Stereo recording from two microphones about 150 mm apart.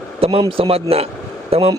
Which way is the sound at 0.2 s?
40° right (ahead or behind).